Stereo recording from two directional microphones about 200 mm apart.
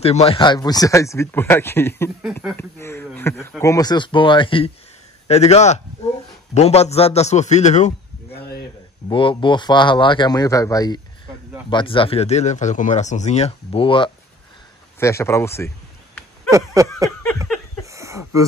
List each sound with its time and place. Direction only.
0.0 s a man's voice: 30° left (ahead or behind)
15.0 s speech: 15° left (ahead or behind)
16.4 s a sound: 15° right (ahead or behind)